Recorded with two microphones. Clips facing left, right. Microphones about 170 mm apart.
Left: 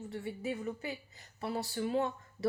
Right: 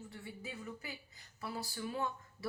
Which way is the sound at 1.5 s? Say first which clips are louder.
Left 8 dB; 65° left (ahead or behind).